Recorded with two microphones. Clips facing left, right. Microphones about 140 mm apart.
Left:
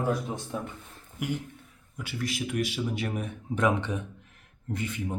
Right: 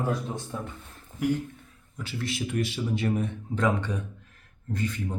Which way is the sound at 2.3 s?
10° left (ahead or behind).